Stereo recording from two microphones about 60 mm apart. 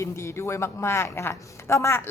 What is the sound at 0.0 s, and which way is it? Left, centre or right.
Speech, left.